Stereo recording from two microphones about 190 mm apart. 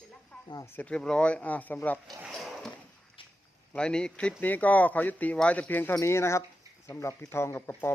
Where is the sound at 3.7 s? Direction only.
5° left (ahead or behind).